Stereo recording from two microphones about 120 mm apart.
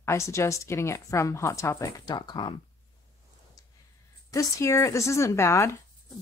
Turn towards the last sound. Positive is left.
turn(degrees=25)  # may be behind; listen again after turning